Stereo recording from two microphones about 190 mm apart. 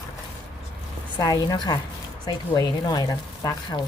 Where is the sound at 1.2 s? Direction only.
20° left (ahead or behind).